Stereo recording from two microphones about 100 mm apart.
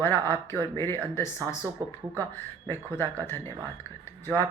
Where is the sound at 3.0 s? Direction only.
25° left (ahead or behind).